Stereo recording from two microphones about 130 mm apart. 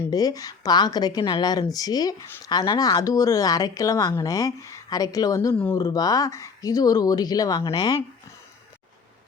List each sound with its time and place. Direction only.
0.1 s speech: 30° left (ahead or behind)